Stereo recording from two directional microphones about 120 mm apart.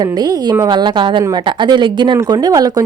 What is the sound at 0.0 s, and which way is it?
Speech, 35° right (ahead or behind).